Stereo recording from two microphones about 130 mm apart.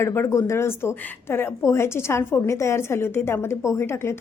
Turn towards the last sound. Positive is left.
turn(degrees=20)  # may be behind; listen again after turning